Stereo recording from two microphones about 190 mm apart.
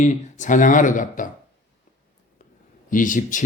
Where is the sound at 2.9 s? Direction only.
45° left (ahead or behind).